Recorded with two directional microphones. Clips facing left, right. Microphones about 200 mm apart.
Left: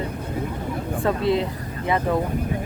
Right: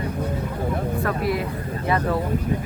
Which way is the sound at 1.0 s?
25° left (ahead or behind).